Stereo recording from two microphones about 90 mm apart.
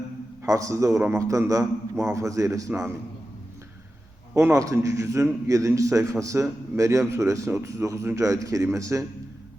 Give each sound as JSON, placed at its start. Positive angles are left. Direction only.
{"t": 0.4, "sound": "a man's voice", "side_deg": -35}
{"t": 4.4, "sound": "a man's voice", "side_deg": -30}